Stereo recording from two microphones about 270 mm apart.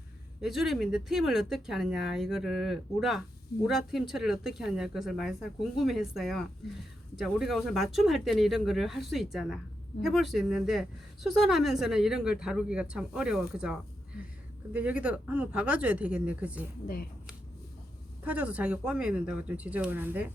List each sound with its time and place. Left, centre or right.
0.4 s speech: centre
14.7 s speech: centre
16.8 s speech: left
18.2 s speech: centre